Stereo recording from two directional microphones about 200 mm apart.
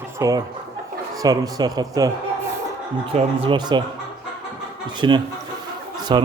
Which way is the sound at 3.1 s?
30° right (ahead or behind).